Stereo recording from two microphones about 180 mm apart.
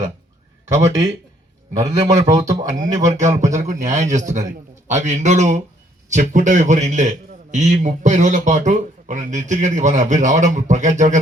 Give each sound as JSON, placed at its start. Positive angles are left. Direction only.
{"t": 0.7, "sound": "speech", "side_deg": -15}
{"t": 3.2, "sound": "a man's voice", "side_deg": -40}